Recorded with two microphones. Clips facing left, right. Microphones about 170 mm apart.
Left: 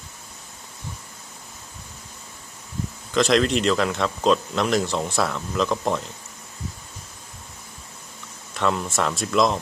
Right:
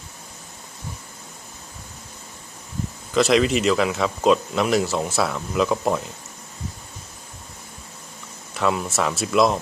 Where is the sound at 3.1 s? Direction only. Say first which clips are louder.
Right 1 dB; 5° right (ahead or behind).